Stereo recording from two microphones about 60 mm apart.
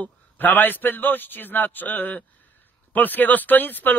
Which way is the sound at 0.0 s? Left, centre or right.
Left.